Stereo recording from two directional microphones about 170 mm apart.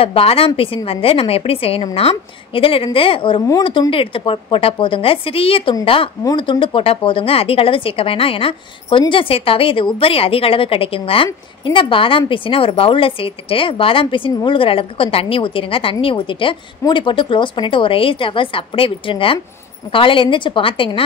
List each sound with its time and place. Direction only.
0.0 s a woman's voice: 35° left (ahead or behind)